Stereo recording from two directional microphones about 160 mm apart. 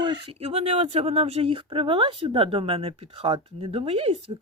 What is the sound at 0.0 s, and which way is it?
Speech, 35° right (ahead or behind).